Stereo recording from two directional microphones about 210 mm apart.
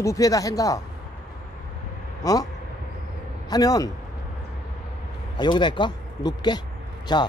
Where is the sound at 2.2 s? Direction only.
15° left (ahead or behind).